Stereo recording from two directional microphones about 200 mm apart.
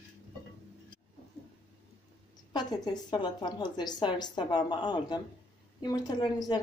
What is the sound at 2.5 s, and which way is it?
A woman's voice, 20° left (ahead or behind).